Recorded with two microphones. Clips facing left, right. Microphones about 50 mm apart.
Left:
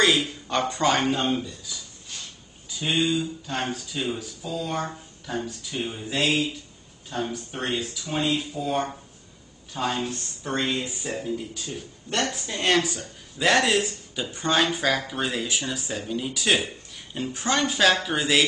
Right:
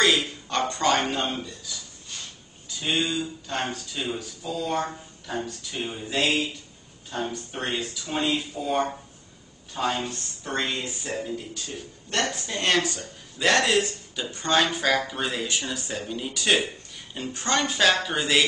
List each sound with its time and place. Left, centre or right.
0.0 s speech: centre
10.0 s speech: centre